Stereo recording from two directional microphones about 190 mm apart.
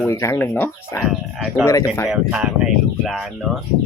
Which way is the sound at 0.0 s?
15° left (ahead or behind).